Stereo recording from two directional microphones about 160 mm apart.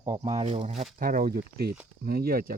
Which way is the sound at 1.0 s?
60° right (ahead or behind).